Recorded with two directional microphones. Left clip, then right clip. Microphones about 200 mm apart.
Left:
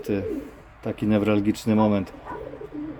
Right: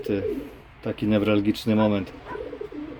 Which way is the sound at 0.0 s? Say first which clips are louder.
Right 1 dB; 10° left (ahead or behind).